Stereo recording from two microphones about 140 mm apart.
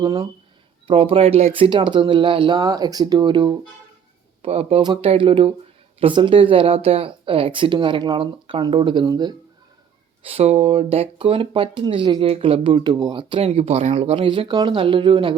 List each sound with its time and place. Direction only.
0.0 s speech: 30° right (ahead or behind)
4.4 s speech: 45° right (ahead or behind)
10.2 s speech: 45° right (ahead or behind)
13.5 s speech: 50° right (ahead or behind)